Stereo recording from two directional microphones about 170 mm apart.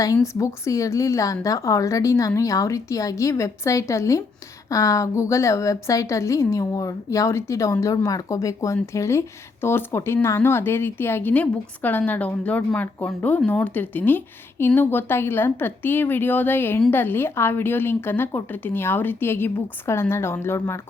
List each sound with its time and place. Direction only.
0.0 s a woman's voice: 20° left (ahead or behind)